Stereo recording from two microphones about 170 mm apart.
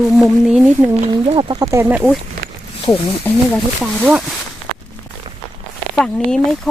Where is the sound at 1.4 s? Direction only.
25° right (ahead or behind); by 2.1 s 10° right (ahead or behind).